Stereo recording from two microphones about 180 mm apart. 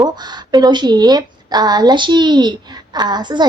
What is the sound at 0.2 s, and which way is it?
A woman's voice, 25° right (ahead or behind).